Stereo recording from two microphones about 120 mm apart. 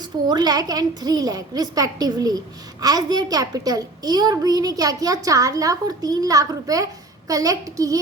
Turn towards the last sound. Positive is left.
turn(degrees=-30)  # may be behind; listen again after turning